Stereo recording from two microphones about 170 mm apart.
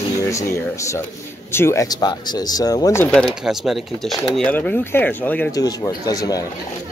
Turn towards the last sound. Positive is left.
turn(degrees=20)  # may be behind; listen again after turning